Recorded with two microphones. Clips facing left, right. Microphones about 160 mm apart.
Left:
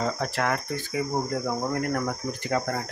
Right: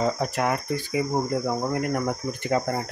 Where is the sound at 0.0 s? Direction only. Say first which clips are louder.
Right 3 dB; 15° right (ahead or behind).